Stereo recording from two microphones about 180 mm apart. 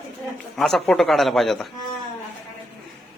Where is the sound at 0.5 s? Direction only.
Centre (ahead or behind).